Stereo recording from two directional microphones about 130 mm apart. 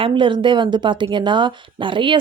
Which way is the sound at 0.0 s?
40° right (ahead or behind).